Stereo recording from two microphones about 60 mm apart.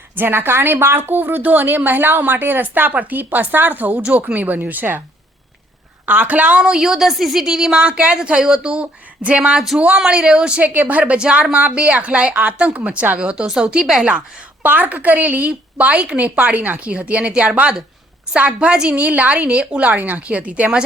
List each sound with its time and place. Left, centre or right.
0.2 s a woman's voice: right
6.1 s a woman's voice: right; by 14.1 s centre
14.6 s speech: right